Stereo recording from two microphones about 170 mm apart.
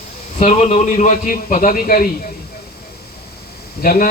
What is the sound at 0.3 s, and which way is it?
A man's voice, 40° left (ahead or behind).